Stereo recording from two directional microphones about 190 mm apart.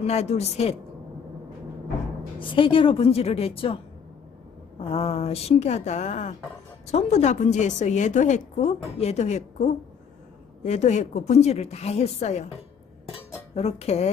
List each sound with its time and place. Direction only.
0.0 s a woman's voice: 35° left (ahead or behind)
2.4 s a woman's voice: 25° left (ahead or behind)
4.7 s a woman's voice: 30° left (ahead or behind)
13.6 s a woman's voice: 35° left (ahead or behind)